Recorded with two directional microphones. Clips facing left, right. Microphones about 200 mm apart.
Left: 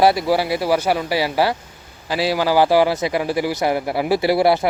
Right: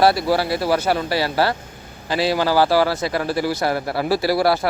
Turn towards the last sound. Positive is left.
turn(degrees=20)  # may be behind; listen again after turning